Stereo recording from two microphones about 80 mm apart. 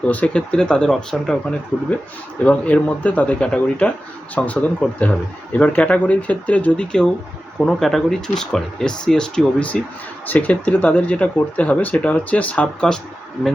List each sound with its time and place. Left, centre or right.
0.1 s speech: centre